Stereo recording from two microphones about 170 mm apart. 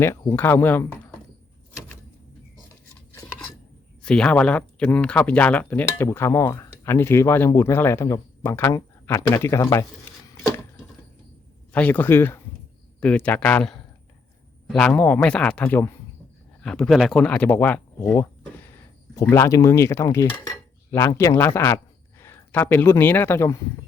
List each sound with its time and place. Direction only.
0.0 s speech: 15° left (ahead or behind)
4.0 s speech: 5° left (ahead or behind)
11.7 s speech: 10° left (ahead or behind)